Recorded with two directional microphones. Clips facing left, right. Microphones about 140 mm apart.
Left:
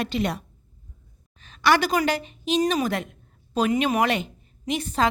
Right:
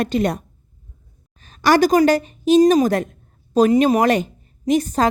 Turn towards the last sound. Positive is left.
turn(degrees=-40)  # may be behind; listen again after turning